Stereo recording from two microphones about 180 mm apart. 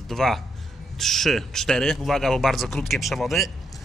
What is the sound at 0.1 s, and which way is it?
Speech, centre (ahead or behind).